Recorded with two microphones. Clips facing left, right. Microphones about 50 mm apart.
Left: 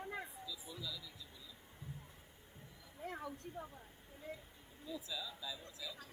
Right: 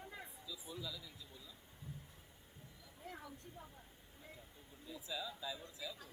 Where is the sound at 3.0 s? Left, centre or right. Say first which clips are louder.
Left 6 dB; left.